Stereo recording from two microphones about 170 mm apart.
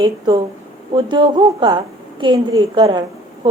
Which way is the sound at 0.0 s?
25° right (ahead or behind).